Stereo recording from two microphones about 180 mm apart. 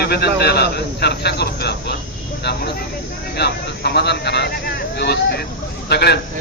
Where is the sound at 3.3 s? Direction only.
65° left (ahead or behind).